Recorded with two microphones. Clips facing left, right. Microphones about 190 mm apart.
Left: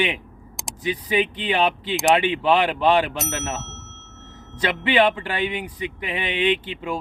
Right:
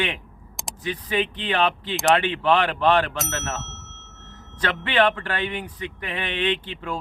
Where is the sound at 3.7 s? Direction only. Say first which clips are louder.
Left 3 dB; centre (ahead or behind).